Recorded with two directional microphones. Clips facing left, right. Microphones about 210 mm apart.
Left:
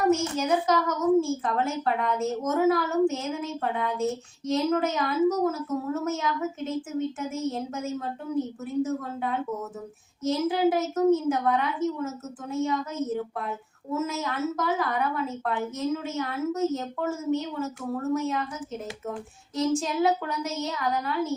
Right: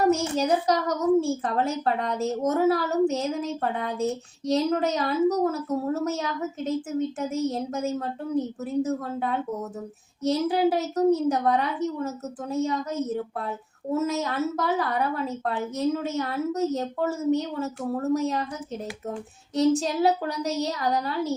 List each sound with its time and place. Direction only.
0.1 s a woman's voice: 35° right (ahead or behind)
10.2 s a woman's voice: 35° right (ahead or behind)
19.5 s a woman's voice: 35° right (ahead or behind)